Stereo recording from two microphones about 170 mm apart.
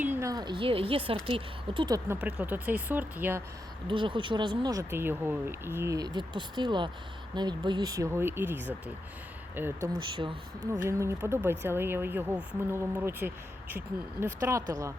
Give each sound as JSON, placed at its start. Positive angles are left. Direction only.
{"t": 0.0, "sound": "speech", "side_deg": -15}
{"t": 2.2, "sound": "speech", "side_deg": -10}
{"t": 3.8, "sound": "speech", "side_deg": -30}